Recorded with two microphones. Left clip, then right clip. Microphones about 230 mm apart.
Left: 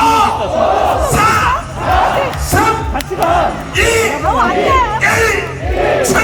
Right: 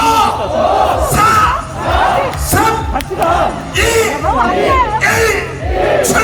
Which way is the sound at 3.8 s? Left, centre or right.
Right.